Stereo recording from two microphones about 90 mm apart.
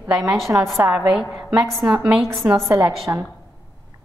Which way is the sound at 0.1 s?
5° right (ahead or behind).